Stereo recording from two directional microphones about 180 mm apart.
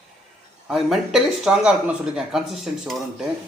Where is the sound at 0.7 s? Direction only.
Centre (ahead or behind).